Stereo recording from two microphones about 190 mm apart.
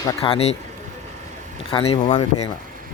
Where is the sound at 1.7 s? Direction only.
30° left (ahead or behind).